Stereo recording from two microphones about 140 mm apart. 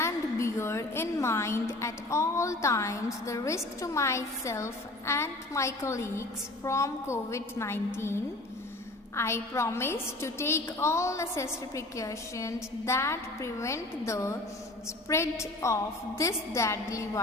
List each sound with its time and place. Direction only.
0.0 s a woman's voice: 20° left (ahead or behind)